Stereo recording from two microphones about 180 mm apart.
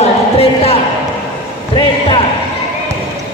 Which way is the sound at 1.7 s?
30° left (ahead or behind).